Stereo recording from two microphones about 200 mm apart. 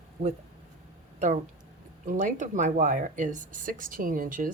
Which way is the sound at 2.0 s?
40° right (ahead or behind).